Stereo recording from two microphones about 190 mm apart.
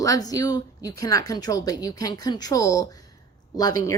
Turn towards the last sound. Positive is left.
turn(degrees=20)  # may be behind; listen again after turning